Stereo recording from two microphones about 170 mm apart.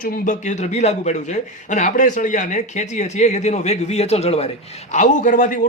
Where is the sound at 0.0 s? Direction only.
50° left (ahead or behind).